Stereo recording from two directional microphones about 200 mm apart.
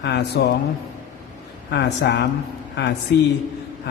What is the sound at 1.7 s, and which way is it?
Speech, 55° left (ahead or behind).